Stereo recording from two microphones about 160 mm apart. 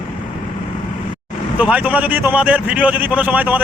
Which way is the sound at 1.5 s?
10° right (ahead or behind).